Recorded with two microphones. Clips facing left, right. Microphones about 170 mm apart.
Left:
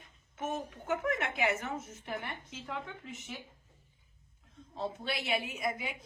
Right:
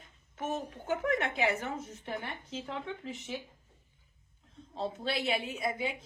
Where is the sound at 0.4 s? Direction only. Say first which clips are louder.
Right 1 dB; 30° right (ahead or behind).